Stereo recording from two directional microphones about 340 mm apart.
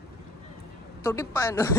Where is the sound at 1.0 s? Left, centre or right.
Centre.